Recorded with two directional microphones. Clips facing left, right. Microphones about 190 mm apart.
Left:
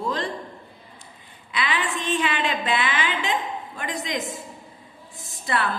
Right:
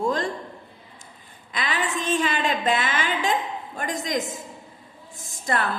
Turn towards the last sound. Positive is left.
turn(degrees=-45)  # may be behind; listen again after turning